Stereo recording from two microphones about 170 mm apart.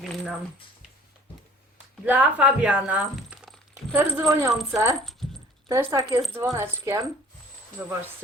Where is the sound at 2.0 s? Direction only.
10° right (ahead or behind).